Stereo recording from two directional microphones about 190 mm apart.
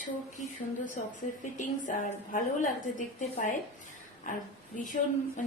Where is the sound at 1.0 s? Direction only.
40° left (ahead or behind).